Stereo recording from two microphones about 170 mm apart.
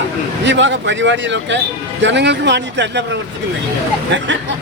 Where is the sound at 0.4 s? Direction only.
90° right.